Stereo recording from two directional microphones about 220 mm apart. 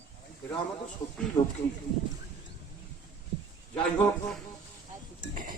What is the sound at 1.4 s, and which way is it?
Speech, 15° left (ahead or behind).